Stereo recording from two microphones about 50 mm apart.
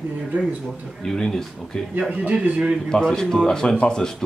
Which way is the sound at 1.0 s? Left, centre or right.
Centre.